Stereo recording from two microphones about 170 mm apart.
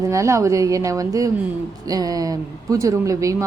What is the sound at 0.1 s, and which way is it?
Speech, 20° right (ahead or behind).